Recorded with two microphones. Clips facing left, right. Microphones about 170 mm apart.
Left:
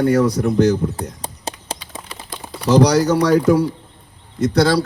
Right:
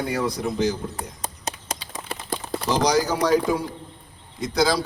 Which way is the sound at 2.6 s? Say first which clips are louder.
Left 8 dB; 70° left (ahead or behind).